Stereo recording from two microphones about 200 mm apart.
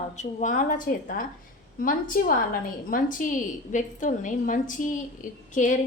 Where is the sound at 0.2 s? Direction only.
40° left (ahead or behind).